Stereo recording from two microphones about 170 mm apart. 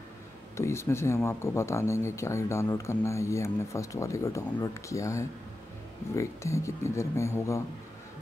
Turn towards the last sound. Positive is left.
turn(degrees=15)  # may be behind; listen again after turning